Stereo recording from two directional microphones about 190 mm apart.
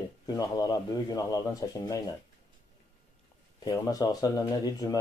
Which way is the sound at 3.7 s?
20° left (ahead or behind).